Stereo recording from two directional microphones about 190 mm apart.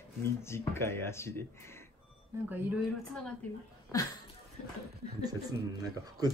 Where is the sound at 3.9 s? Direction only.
15° left (ahead or behind).